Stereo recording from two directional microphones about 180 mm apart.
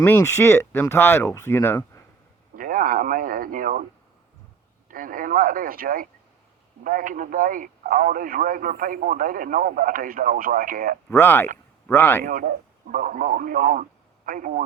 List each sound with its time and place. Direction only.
0.0 s speech: 15° left (ahead or behind)
2.6 s speech: 50° right (ahead or behind)
4.9 s speech: 50° right (ahead or behind)
11.1 s speech: 15° left (ahead or behind)
12.2 s speech: 50° right (ahead or behind)